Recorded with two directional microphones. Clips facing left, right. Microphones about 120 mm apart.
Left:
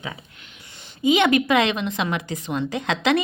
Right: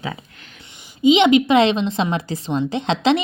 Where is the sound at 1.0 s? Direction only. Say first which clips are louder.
Right 5 dB; 20° right (ahead or behind).